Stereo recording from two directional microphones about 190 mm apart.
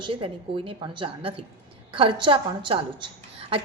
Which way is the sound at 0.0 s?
25° right (ahead or behind).